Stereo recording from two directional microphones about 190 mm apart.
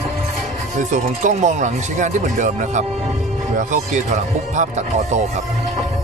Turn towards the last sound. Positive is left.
turn(degrees=-40)  # may be behind; listen again after turning